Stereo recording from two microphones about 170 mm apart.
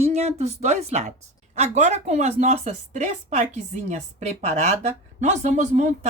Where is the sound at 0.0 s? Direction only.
40° right (ahead or behind).